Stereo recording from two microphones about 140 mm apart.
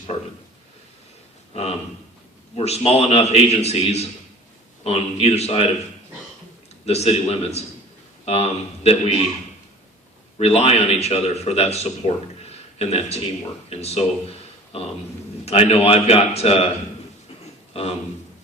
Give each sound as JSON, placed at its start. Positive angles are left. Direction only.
{"t": 0.1, "sound": "speech", "side_deg": 35}
{"t": 2.6, "sound": "a man's voice", "side_deg": 45}
{"t": 6.8, "sound": "a man's voice", "side_deg": 50}
{"t": 10.3, "sound": "a man's voice", "side_deg": 45}
{"t": 15.4, "sound": "a man's voice", "side_deg": 45}